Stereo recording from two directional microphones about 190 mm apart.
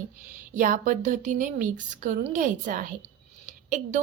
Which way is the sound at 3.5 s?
40° right (ahead or behind).